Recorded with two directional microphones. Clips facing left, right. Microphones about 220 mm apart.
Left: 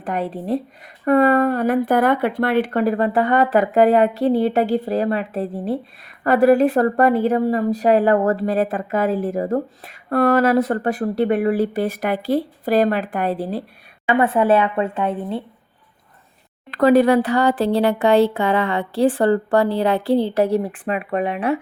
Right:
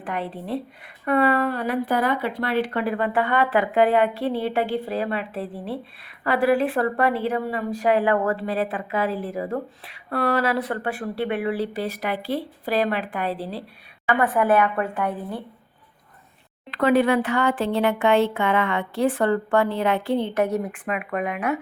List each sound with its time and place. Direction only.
0.0 s speech: 40° left (ahead or behind)
14.1 s a woman's voice: 25° left (ahead or behind)
16.7 s speech: 40° left (ahead or behind)